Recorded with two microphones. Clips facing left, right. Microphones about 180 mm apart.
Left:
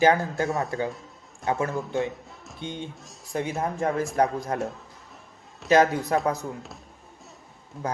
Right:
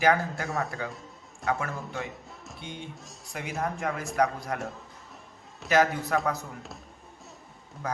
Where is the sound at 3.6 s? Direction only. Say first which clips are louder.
Left 3 dB; 30° left (ahead or behind).